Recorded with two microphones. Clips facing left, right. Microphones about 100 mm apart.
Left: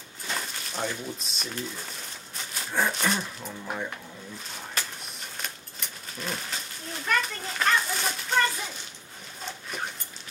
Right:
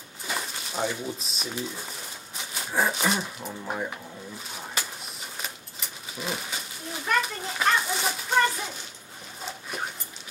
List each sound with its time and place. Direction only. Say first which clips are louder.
0.3 s speech: right 1 dB; 5° right (ahead or behind)
4.6 s a sound: right 1 dB; 5° right (ahead or behind)
9.4 s dog: right 1 dB; 5° right (ahead or behind)